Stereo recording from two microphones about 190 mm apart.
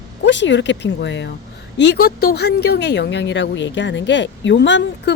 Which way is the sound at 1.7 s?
60° left (ahead or behind).